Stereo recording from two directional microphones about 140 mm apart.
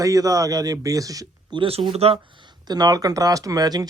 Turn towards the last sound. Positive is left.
turn(degrees=-30)  # may be behind; listen again after turning